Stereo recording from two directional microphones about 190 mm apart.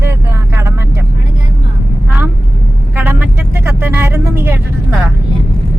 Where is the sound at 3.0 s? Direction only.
10° right (ahead or behind).